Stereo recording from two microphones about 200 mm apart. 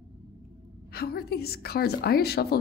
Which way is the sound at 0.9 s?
50° left (ahead or behind).